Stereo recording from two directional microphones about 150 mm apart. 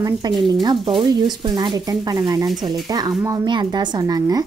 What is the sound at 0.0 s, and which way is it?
A woman's voice, 25° right (ahead or behind).